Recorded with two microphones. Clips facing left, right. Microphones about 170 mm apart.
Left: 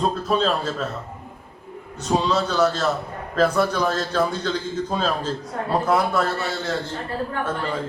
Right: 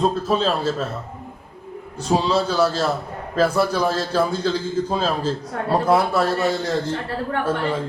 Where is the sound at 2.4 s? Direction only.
10° right (ahead or behind).